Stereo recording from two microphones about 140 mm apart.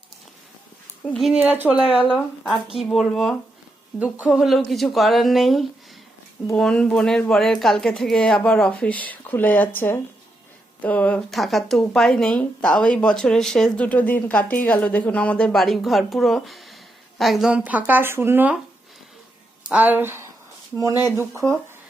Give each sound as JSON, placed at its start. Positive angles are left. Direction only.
{"t": 1.1, "sound": "speech", "side_deg": -5}
{"t": 2.0, "sound": "speech", "side_deg": 10}
{"t": 19.6, "sound": "speech", "side_deg": -10}